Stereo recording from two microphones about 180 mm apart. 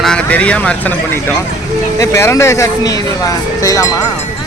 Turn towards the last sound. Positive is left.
turn(degrees=20)  # may be behind; listen again after turning